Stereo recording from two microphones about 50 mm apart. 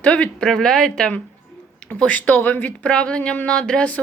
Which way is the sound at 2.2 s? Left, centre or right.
Left.